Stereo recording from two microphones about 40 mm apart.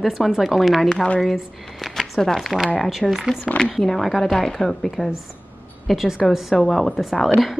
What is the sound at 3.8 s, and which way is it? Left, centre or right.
A woman's voice, centre.